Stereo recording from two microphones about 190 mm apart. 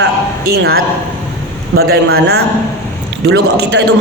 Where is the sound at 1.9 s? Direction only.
55° right (ahead or behind).